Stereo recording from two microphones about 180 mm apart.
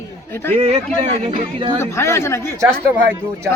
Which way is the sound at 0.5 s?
35° right (ahead or behind).